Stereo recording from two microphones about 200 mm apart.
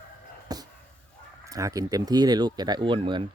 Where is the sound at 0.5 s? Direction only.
20° right (ahead or behind).